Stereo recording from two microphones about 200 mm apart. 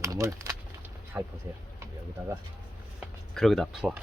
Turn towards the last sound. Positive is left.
turn(degrees=0)  # may be behind; listen again after turning